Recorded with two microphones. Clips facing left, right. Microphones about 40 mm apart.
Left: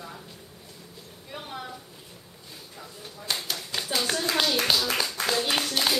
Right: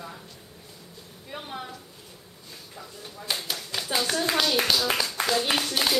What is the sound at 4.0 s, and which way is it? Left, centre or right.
Speech, centre.